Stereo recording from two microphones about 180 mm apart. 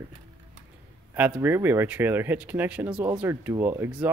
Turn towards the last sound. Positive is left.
turn(degrees=-10)  # may be behind; listen again after turning